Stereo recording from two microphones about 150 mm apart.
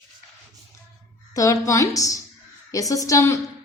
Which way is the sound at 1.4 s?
20° left (ahead or behind).